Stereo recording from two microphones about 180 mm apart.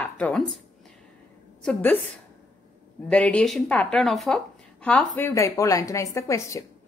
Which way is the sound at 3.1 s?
5° left (ahead or behind).